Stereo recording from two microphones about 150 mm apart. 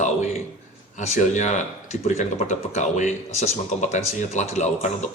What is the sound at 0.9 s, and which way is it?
Speech, 50° left (ahead or behind).